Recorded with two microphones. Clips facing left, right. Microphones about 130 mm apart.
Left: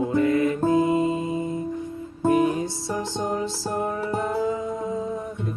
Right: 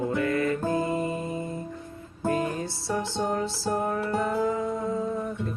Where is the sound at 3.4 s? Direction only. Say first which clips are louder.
Left 1 dB; 15° left (ahead or behind).